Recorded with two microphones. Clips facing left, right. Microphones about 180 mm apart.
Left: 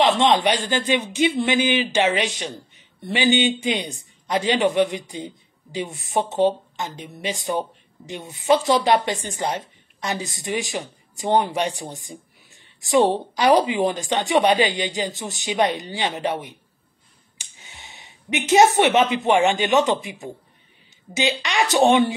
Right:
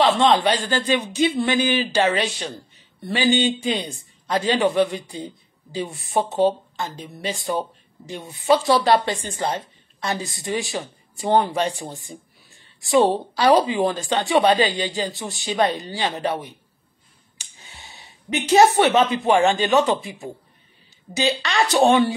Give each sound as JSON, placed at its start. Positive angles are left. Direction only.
{"t": 0.0, "sound": "a woman's voice", "side_deg": 20}
{"t": 13.3, "sound": "a woman's voice", "side_deg": 15}
{"t": 17.6, "sound": "a sound", "side_deg": 20}
{"t": 18.5, "sound": "a woman's voice", "side_deg": 15}